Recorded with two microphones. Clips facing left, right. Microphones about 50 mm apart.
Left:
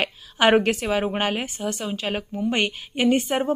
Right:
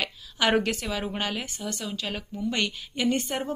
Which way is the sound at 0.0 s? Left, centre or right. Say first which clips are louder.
Left 6 dB; left.